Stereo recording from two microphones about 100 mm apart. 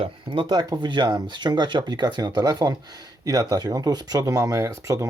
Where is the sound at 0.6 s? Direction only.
45° right (ahead or behind).